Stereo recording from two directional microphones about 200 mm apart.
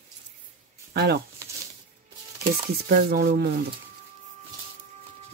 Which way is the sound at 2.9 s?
50° right (ahead or behind).